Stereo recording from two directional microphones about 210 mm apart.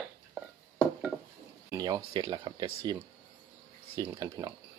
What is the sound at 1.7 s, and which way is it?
Speech, 15° right (ahead or behind).